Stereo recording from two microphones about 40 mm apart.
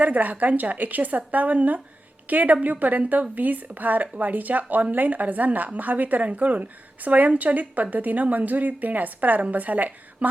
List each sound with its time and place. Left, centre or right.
0.0 s speech: right